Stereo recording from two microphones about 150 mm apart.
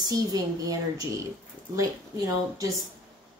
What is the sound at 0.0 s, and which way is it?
Speech, 25° right (ahead or behind).